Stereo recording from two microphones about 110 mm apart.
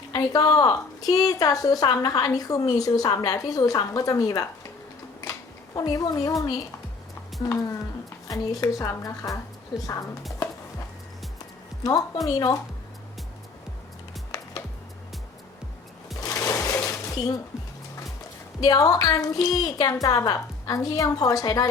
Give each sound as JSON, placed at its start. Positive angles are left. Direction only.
{"t": 0.2, "sound": "a woman's voice", "side_deg": 30}
{"t": 5.7, "sound": "a woman's voice", "side_deg": 35}
{"t": 11.8, "sound": "a woman's voice", "side_deg": 35}
{"t": 16.2, "sound": "sewing machine", "side_deg": 30}
{"t": 18.6, "sound": "a woman's voice", "side_deg": 35}